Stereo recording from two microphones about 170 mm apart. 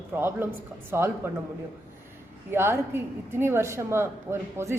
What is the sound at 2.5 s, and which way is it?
A woman's voice, 15° right (ahead or behind).